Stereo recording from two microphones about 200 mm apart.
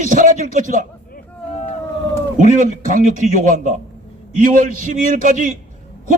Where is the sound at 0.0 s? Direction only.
40° right (ahead or behind).